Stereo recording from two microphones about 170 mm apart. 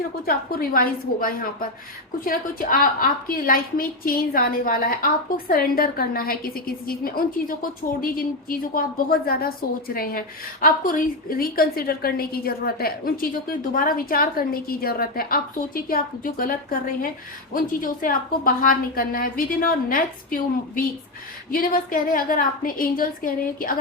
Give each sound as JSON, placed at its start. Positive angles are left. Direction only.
{"t": 0.3, "sound": "a woman's voice", "side_deg": 60}